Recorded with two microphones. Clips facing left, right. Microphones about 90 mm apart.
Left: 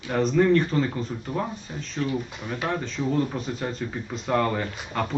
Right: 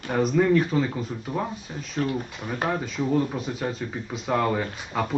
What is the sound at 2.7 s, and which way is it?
Speech, 10° right (ahead or behind).